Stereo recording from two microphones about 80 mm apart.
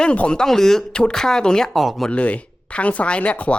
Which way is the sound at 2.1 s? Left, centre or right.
Centre.